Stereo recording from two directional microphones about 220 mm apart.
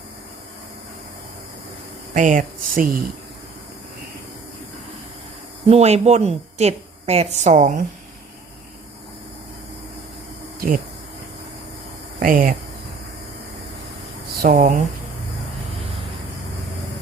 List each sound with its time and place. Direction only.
2.1 s speech: 35° right (ahead or behind)
5.6 s speech: 30° right (ahead or behind)
10.6 s speech: 40° right (ahead or behind)
12.2 s speech: 40° right (ahead or behind)
14.4 s speech: 40° right (ahead or behind)